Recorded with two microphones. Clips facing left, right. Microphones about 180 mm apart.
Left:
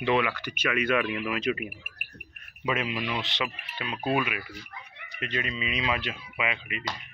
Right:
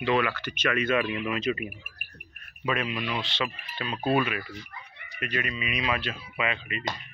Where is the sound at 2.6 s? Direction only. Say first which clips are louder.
Even; 20° left (ahead or behind).